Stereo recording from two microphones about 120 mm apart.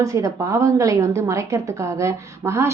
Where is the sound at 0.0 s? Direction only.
30° right (ahead or behind).